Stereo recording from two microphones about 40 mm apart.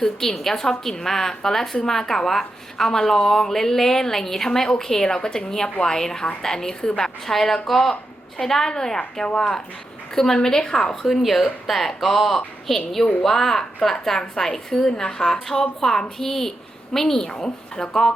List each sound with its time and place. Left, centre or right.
0.0 s a woman's voice: centre
11.0 s a woman's voice: centre; by 17.8 s left